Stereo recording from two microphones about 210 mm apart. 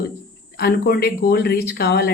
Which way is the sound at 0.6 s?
45° left (ahead or behind).